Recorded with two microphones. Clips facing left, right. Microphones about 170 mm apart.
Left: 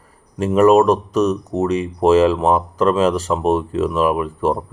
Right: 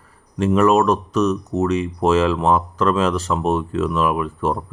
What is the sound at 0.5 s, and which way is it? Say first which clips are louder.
Speech: left 4 dB; 10° left (ahead or behind).